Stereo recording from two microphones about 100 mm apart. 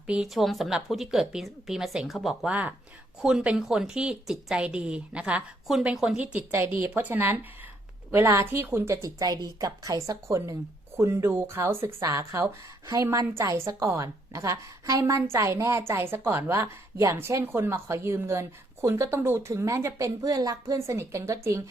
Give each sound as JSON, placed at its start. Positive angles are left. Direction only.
{"t": 0.1, "sound": "a woman's voice", "side_deg": -5}
{"t": 2.5, "sound": "a woman's voice", "side_deg": -15}
{"t": 6.3, "sound": "a woman's voice", "side_deg": -20}